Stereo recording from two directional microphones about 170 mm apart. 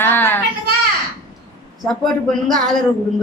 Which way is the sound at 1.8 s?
Centre (ahead or behind).